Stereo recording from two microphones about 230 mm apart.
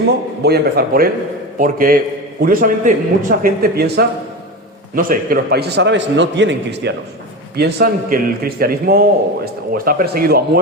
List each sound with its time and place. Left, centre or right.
0.4 s a man's voice: right